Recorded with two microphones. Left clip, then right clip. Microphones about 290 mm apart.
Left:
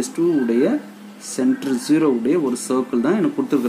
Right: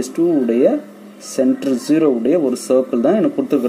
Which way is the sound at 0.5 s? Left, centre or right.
Centre.